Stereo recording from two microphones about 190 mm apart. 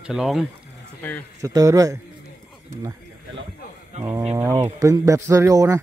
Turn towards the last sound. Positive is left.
turn(degrees=-15)  # may be behind; listen again after turning